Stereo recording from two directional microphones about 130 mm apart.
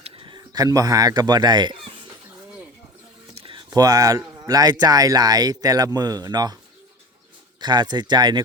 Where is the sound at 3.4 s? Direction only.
45° right (ahead or behind).